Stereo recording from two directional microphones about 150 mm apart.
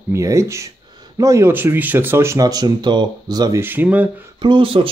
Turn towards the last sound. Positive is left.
turn(degrees=-35)  # may be behind; listen again after turning